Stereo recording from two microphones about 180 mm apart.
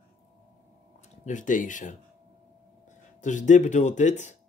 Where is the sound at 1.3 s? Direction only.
45° left (ahead or behind).